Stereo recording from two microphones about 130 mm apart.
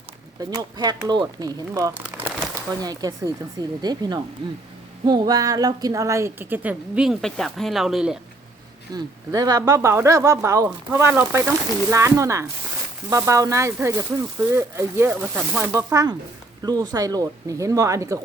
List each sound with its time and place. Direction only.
0.3 s speech: 30° right (ahead or behind)
1.9 s crumpling: 15° right (ahead or behind)
2.8 s a woman's voice: 30° right (ahead or behind); by 8.2 s 5° right (ahead or behind)
8.9 s a woman's voice: 30° right (ahead or behind); by 15.8 s 15° right (ahead or behind)
15.9 s speech: 25° right (ahead or behind)